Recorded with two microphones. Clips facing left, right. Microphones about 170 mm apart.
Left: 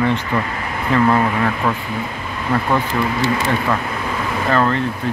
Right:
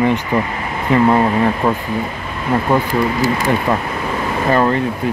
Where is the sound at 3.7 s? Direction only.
20° right (ahead or behind).